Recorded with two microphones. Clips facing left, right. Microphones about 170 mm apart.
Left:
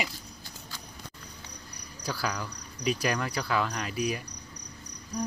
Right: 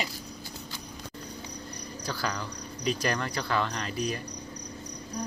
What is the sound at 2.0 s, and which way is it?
Cricket, 10° left (ahead or behind).